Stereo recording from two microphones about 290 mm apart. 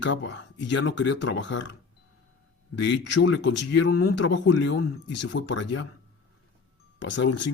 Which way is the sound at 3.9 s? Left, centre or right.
Left.